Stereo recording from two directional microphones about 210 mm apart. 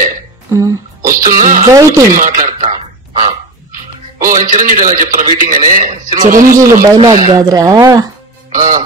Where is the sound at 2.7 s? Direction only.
30° right (ahead or behind).